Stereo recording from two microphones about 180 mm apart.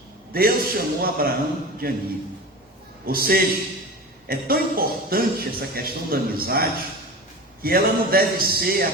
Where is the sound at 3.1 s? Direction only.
55° right (ahead or behind).